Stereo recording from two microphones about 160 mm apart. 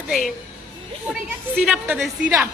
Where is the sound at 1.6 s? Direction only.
10° right (ahead or behind).